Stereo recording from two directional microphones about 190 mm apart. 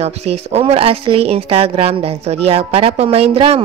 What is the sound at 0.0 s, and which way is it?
Speech, 35° right (ahead or behind).